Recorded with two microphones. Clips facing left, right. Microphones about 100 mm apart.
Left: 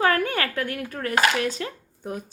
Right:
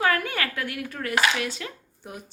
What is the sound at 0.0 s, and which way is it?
Speech, 40° left (ahead or behind).